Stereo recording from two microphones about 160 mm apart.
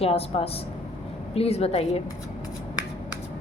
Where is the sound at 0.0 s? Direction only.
35° left (ahead or behind).